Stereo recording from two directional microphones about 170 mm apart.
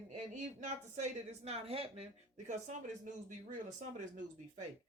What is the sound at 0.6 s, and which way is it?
Speech, 45° right (ahead or behind).